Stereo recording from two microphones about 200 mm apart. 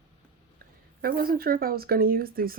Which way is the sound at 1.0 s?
45° right (ahead or behind).